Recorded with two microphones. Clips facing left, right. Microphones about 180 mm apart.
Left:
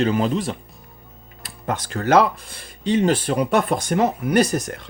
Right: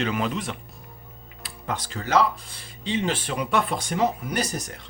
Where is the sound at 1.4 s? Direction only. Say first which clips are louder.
Left 5 dB; 45° left (ahead or behind).